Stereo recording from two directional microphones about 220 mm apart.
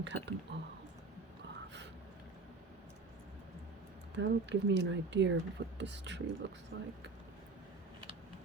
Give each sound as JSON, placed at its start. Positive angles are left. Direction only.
{"t": 0.0, "sound": "speech", "side_deg": -55}
{"t": 4.1, "sound": "speech", "side_deg": -55}